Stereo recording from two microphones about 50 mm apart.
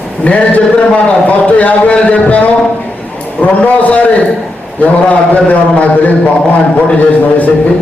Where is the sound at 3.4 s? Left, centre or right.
Left.